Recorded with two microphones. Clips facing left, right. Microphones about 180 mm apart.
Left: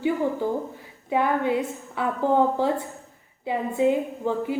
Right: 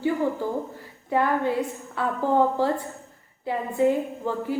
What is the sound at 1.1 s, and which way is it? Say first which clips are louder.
A woman's voice: even; 15° left (ahead or behind).